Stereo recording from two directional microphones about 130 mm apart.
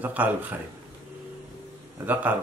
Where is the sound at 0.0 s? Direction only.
15° right (ahead or behind).